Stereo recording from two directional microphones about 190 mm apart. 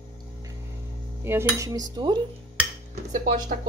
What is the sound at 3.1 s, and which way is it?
Speech, 45° right (ahead or behind).